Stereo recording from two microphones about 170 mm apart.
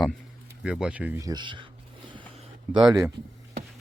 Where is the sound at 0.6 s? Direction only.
5° right (ahead or behind).